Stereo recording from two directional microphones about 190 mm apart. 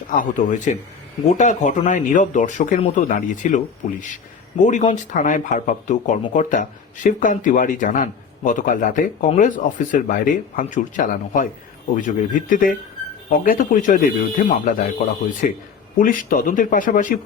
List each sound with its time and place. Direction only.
0.2 s a man's voice: 40° left (ahead or behind)